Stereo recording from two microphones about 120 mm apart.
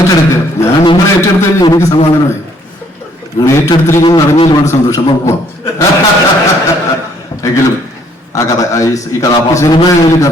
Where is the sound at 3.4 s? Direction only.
25° left (ahead or behind).